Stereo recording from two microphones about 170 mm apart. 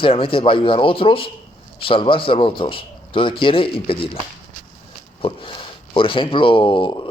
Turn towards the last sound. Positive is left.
turn(degrees=30)  # may be behind; listen again after turning